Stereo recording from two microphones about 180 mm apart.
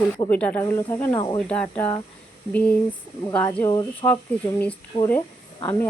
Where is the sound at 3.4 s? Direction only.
20° left (ahead or behind).